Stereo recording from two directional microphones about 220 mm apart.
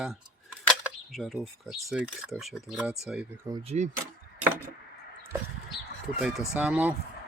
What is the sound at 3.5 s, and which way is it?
Speech, 25° right (ahead or behind).